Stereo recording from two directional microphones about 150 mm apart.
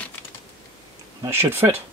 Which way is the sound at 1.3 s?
15° right (ahead or behind).